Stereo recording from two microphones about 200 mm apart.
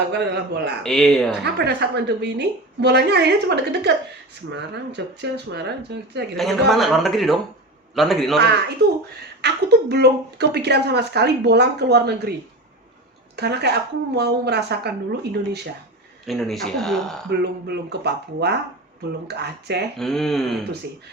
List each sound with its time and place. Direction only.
0.1 s speech: 55° right (ahead or behind)
0.8 s speech: centre (ahead or behind)
1.6 s speech: 55° right (ahead or behind)
6.3 s speech: centre (ahead or behind)
9.4 s speech: 55° right (ahead or behind)
13.3 s speech: 55° right (ahead or behind)
16.2 s speech: centre (ahead or behind)
17.2 s speech: 55° right (ahead or behind)
20.0 s speech: centre (ahead or behind)